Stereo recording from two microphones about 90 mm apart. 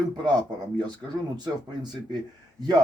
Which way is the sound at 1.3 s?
50° right (ahead or behind).